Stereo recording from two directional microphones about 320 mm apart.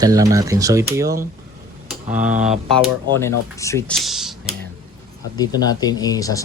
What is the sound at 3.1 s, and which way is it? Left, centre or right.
Speech, centre.